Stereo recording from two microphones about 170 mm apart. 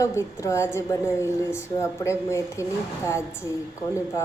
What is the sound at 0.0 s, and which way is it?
A woman's voice, 15° left (ahead or behind).